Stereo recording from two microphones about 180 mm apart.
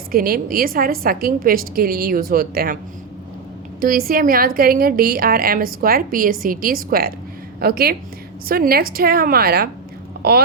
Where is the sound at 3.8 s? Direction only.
55° right (ahead or behind).